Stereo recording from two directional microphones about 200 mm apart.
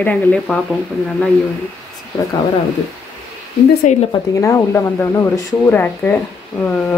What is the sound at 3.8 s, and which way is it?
Speech, 35° left (ahead or behind).